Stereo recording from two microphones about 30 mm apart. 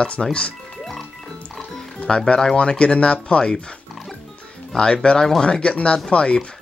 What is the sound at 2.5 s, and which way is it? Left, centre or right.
Speech, left.